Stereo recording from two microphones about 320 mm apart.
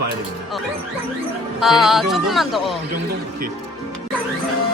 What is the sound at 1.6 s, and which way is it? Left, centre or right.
Speech, centre.